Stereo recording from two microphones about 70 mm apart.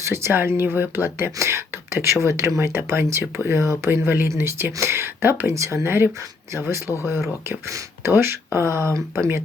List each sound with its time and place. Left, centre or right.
0.0 s speech: right
2.2 s speech: right
3.8 s speech: right